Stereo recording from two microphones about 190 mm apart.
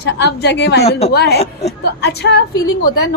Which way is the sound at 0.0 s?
60° left (ahead or behind).